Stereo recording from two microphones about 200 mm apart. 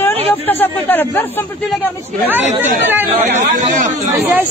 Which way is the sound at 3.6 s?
40° right (ahead or behind).